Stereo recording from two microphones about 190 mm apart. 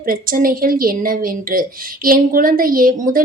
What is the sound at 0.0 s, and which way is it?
A woman's voice, 50° right (ahead or behind).